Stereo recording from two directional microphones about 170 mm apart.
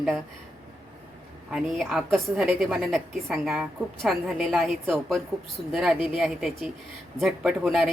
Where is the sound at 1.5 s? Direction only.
5° right (ahead or behind).